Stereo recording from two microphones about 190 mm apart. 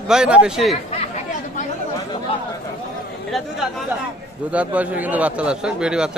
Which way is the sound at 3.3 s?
Centre (ahead or behind).